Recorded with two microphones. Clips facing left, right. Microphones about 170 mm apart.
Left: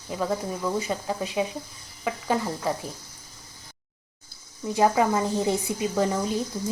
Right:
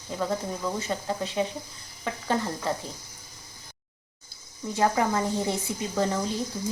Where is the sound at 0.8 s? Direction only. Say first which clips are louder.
Left 1 dB; 15° left (ahead or behind).